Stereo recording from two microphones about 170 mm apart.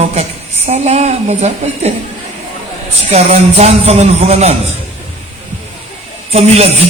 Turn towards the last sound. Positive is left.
turn(degrees=-35)  # may be behind; listen again after turning